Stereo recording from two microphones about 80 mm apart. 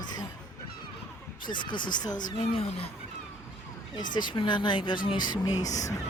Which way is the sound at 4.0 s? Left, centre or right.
Left.